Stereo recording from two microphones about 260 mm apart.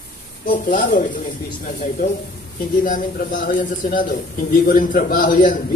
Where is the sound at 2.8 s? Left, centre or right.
Left.